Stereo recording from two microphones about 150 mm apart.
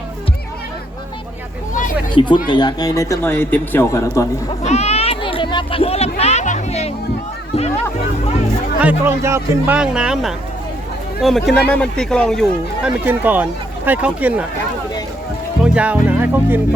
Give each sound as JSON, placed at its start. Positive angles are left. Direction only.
{"t": 2.1, "sound": "a man's voice", "side_deg": 30}
{"t": 4.6, "sound": "a sound", "side_deg": 45}
{"t": 6.1, "sound": "music", "side_deg": 45}
{"t": 8.8, "sound": "speech", "side_deg": -10}
{"t": 9.7, "sound": "speech", "side_deg": -5}
{"t": 12.8, "sound": "speech", "side_deg": -10}
{"t": 15.6, "sound": "speech", "side_deg": -10}